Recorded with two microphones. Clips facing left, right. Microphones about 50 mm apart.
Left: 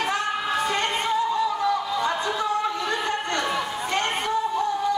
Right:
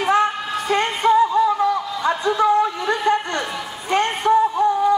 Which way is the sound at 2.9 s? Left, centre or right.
Right.